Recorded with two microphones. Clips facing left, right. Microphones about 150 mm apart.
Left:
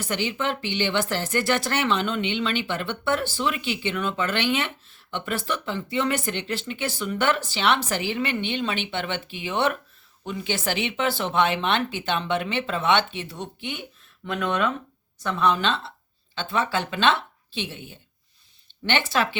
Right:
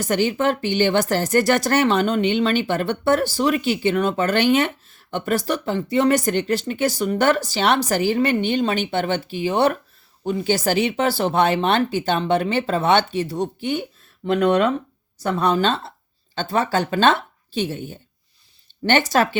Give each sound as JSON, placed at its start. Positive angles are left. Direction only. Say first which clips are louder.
{"t": 0.0, "sound": "speech", "louder": "right 7 dB", "side_deg": -45}